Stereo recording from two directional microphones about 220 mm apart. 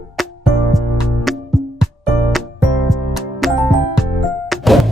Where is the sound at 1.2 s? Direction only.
Centre (ahead or behind).